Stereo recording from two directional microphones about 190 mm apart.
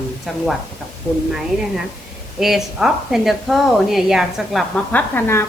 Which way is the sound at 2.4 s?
Centre (ahead or behind).